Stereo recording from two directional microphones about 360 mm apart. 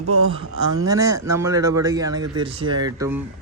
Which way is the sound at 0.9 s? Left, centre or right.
Centre.